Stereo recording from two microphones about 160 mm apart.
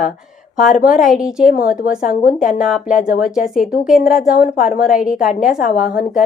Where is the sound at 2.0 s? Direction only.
60° left (ahead or behind).